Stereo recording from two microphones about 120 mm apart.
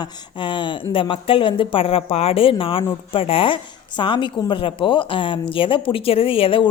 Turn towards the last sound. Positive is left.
turn(degrees=45)  # may be behind; listen again after turning